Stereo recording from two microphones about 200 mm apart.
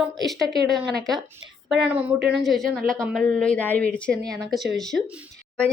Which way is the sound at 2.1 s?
55° right (ahead or behind).